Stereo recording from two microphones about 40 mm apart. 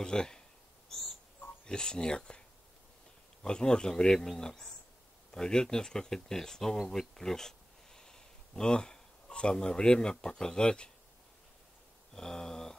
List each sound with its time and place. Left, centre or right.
0.0 s speech: centre
1.7 s speech: left
3.4 s speech: left
12.1 s a sound: centre